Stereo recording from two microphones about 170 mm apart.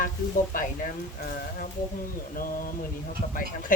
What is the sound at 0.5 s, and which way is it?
Speech, 55° left (ahead or behind).